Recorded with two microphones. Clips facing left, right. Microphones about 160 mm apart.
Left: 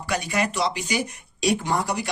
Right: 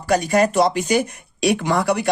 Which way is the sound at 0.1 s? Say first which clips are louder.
Right 9 dB; 45° right (ahead or behind).